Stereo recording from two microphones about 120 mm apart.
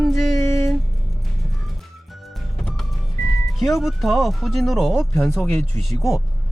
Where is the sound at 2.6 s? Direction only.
5° left (ahead or behind).